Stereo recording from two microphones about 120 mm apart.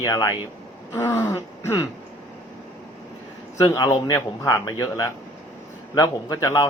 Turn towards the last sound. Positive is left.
turn(degrees=30)  # may be behind; listen again after turning